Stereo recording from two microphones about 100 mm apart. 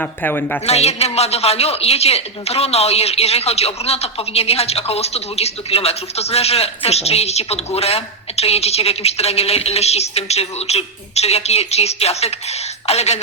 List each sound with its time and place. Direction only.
0.0 s a woman's voice: 15° left (ahead or behind)
0.6 s speech: 90° left